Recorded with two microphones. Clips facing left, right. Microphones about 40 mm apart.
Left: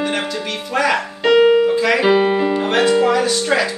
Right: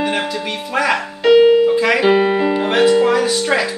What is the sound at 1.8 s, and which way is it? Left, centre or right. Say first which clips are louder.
Speech: right 1 dB; centre.